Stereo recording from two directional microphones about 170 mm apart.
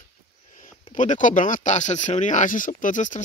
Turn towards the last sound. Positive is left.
turn(degrees=50)  # may be behind; listen again after turning